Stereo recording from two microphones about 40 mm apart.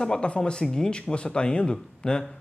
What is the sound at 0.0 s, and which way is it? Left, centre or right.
Speech, centre.